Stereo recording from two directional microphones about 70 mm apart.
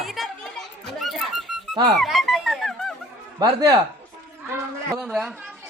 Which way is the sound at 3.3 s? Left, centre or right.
Right.